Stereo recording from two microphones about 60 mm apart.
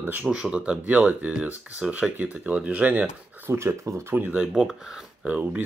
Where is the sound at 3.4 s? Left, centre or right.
Right.